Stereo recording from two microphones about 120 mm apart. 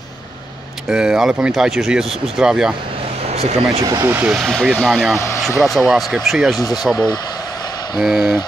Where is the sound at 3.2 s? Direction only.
60° right (ahead or behind).